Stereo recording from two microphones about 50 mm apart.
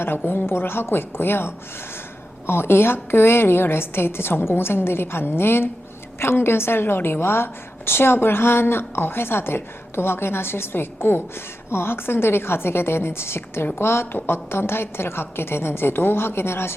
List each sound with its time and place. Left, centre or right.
0.0 s a woman's voice: left